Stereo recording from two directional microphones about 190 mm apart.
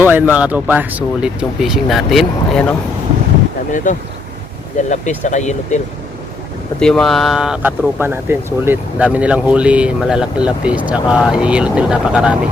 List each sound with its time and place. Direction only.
0.0 s a sound: 10° right (ahead or behind)
0.3 s speech: 5° right (ahead or behind)
3.7 s speech: 40° left (ahead or behind)
6.7 s speech: 5° left (ahead or behind)